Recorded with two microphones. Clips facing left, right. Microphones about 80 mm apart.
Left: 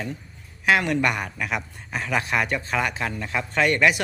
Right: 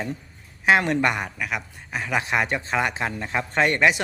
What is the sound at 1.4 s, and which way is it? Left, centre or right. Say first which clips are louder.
Speech: left 1 dB; centre.